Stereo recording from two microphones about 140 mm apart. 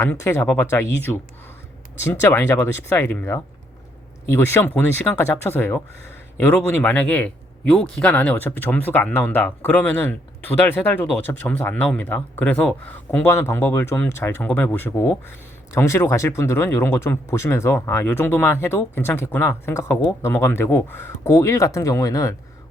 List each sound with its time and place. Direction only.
0.0 s speech: 20° left (ahead or behind)